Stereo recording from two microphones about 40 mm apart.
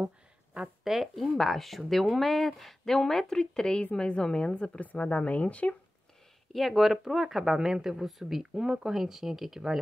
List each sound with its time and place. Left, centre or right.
0.6 s speech: right
1.3 s a woman's voice: centre; by 4.7 s left
4.7 s speech: left
6.5 s speech: centre